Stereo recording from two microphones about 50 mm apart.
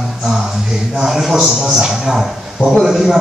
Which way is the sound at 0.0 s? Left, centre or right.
Centre.